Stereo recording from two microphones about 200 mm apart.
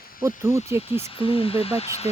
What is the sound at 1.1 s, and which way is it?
Speech, 25° left (ahead or behind).